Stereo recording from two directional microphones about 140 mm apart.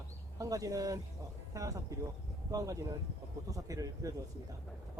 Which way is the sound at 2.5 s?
25° right (ahead or behind).